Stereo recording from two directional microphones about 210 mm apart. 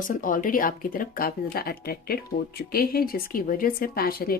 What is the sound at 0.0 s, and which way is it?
A woman's voice, 40° left (ahead or behind).